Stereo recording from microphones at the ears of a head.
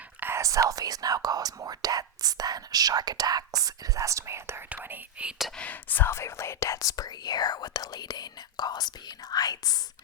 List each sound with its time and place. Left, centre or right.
0.3 s speech: right
5.6 s speech: left